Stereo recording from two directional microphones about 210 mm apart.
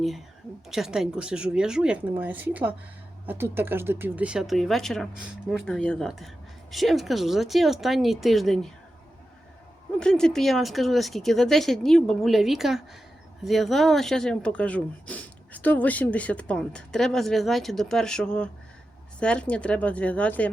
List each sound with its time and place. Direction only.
0.7 s speech: centre (ahead or behind)
10.0 s speech: 5° left (ahead or behind)